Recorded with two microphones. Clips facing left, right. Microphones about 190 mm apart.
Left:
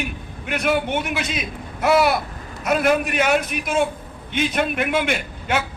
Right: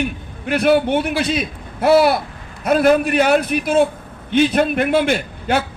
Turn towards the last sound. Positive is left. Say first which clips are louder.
# right 5 dB
turn(degrees=-35)  # may be behind; listen again after turning